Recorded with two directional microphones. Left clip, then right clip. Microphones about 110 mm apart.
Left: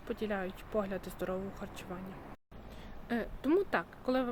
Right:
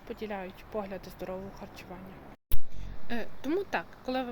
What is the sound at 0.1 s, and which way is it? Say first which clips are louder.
Speech: left 1 dB; 50° left (ahead or behind).